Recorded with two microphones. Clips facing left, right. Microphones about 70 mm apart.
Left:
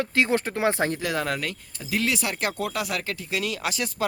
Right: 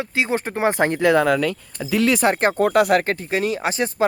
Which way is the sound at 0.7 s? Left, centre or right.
Right.